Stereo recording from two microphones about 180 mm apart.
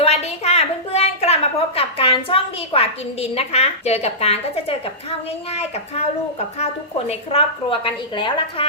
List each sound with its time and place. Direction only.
0.0 s a woman's voice: 35° left (ahead or behind)
7.1 s a woman's voice: 35° left (ahead or behind)